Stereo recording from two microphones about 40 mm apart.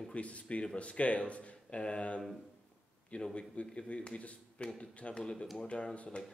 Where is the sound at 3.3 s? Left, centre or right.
Left.